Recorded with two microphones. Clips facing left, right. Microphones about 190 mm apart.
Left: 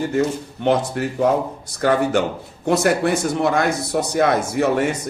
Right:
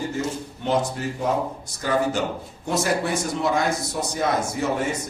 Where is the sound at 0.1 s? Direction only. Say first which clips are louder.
Left 7 dB; 65° left (ahead or behind).